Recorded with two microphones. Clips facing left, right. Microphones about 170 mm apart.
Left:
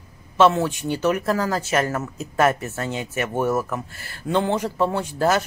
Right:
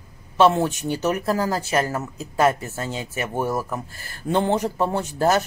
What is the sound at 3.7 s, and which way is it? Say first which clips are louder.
Speech: left 1 dB; 40° right (ahead or behind).